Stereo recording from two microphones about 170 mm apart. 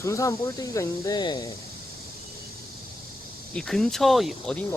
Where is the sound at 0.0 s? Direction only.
20° left (ahead or behind).